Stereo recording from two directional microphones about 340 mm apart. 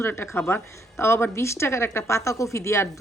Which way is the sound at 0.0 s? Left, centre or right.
Centre.